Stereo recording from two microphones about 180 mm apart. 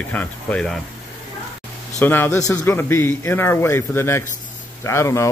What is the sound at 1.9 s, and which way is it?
Speech, 10° left (ahead or behind).